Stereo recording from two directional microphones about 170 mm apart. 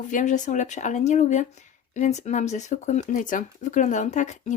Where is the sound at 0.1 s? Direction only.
50° left (ahead or behind).